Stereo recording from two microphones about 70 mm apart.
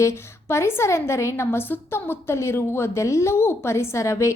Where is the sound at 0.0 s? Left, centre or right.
Left.